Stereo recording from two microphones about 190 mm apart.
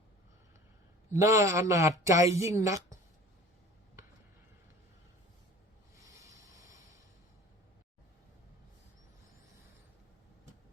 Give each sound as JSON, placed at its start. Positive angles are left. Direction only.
{"t": 1.1, "sound": "a woman's voice", "side_deg": -15}
{"t": 6.0, "sound": "rub", "side_deg": -15}